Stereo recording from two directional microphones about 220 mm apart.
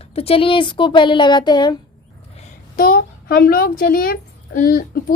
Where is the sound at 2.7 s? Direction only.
40° left (ahead or behind).